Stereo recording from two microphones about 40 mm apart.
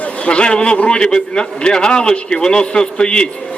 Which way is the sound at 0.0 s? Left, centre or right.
Left.